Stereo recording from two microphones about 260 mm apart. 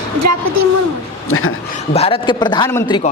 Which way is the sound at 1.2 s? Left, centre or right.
Left.